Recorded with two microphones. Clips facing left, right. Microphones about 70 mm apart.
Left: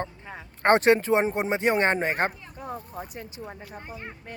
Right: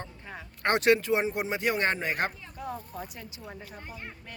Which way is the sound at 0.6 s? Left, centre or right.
Left.